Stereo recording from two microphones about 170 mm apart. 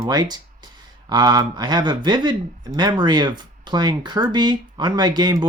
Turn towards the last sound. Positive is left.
turn(degrees=-25)  # may be behind; listen again after turning